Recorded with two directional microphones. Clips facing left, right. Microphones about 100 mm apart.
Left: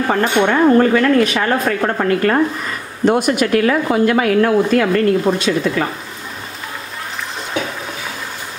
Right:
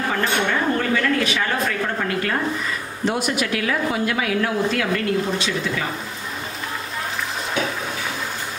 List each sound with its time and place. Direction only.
0.1 s speech: 45° left (ahead or behind)